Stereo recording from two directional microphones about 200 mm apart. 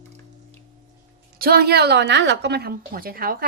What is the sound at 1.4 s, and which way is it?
A woman's voice, 50° right (ahead or behind).